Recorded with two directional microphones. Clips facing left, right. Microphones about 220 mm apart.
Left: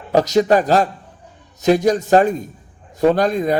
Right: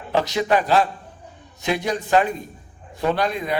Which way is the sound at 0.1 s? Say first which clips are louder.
Left 6 dB; 40° left (ahead or behind).